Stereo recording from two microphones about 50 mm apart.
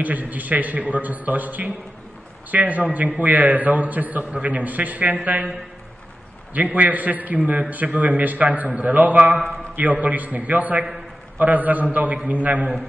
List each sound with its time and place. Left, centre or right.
0.0 s a man's voice: right
6.5 s a man's voice: right